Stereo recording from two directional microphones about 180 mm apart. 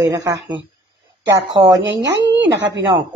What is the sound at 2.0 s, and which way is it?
Speech, 75° right (ahead or behind).